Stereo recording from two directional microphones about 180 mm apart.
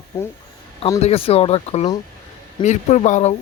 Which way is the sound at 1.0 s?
35° left (ahead or behind).